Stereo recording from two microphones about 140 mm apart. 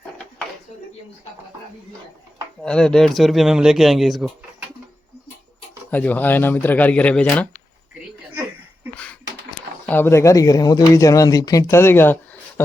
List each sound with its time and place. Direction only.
2.6 s speech: 5° left (ahead or behind)
5.9 s speech: 10° left (ahead or behind)
9.8 s speech: 15° left (ahead or behind)